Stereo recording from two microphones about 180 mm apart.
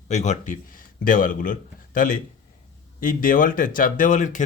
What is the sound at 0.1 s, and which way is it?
A man's voice, 40° left (ahead or behind).